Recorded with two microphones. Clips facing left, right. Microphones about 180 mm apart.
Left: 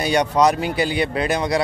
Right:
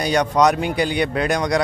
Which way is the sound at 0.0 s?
10° left (ahead or behind).